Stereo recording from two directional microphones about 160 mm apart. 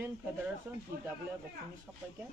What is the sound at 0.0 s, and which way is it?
Speech, 10° right (ahead or behind).